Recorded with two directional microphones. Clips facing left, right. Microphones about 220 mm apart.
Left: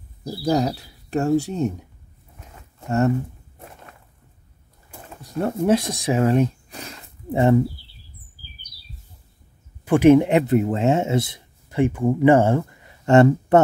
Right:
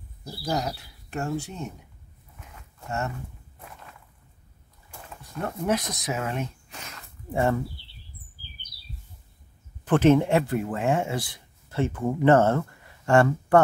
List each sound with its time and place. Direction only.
0.2 s speech: 35° left (ahead or behind)
5.2 s speech: 35° left (ahead or behind)
7.2 s speech: 20° left (ahead or behind)
9.8 s speech: 10° left (ahead or behind)